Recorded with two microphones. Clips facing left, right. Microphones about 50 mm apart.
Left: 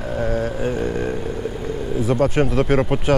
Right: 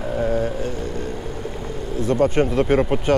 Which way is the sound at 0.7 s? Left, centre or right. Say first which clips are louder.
Left 5 dB; left.